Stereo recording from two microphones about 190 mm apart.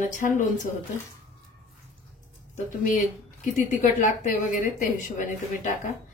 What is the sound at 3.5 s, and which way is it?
A woman's voice, 45° left (ahead or behind).